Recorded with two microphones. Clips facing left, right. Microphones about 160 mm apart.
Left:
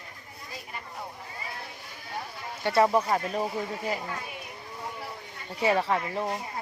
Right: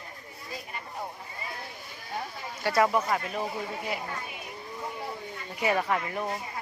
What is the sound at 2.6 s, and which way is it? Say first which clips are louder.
Speech: left 2 dB; 30° left (ahead or behind).